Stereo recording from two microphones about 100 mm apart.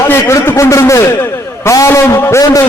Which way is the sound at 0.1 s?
25° left (ahead or behind).